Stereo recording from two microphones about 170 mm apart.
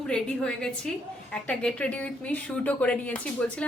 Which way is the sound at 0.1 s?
5° left (ahead or behind).